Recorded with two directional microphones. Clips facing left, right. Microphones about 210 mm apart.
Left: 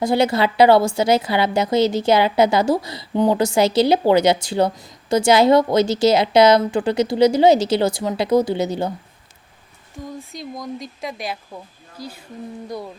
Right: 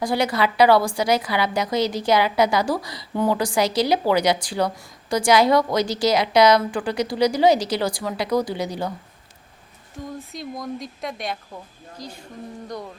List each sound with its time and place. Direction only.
0.0 s a woman's voice: 25° left (ahead or behind)
10.1 s speech: centre (ahead or behind)